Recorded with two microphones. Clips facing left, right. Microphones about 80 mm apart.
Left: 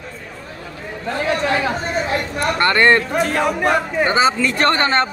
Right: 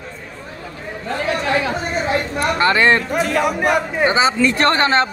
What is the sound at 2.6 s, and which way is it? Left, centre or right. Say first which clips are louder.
Speech: left 1 dB; centre.